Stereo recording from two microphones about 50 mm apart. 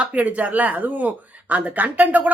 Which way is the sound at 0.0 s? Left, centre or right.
Right.